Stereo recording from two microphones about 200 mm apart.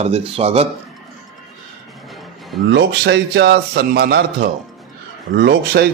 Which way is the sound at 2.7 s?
55° right (ahead or behind).